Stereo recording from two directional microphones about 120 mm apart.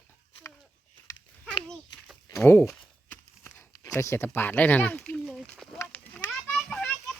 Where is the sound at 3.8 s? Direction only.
25° left (ahead or behind).